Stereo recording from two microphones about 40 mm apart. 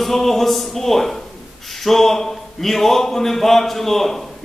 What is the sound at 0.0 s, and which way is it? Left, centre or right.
Speech, centre.